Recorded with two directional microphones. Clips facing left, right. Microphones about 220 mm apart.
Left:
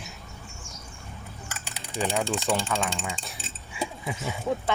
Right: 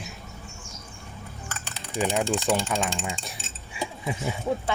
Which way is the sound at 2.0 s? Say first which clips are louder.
Right 2 dB; 15° right (ahead or behind).